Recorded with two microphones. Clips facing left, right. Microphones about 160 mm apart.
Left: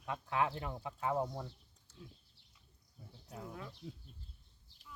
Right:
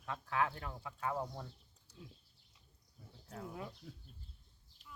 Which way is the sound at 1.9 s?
10° right (ahead or behind).